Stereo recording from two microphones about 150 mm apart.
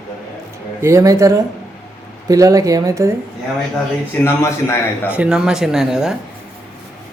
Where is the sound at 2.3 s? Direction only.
25° right (ahead or behind).